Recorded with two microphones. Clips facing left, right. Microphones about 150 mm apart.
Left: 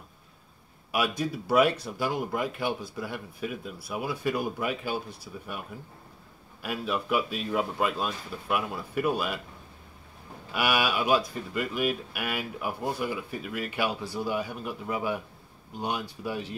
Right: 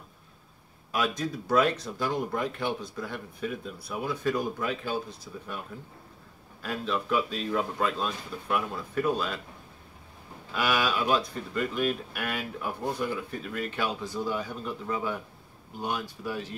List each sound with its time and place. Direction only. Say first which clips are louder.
0.9 s speech: left 1 dB; 10° left (ahead or behind)
6.6 s speech: even; 10° left (ahead or behind)
10.5 s speech: left 1 dB; 10° left (ahead or behind)